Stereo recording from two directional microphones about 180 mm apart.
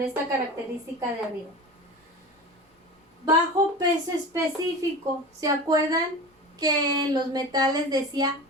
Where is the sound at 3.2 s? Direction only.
25° right (ahead or behind).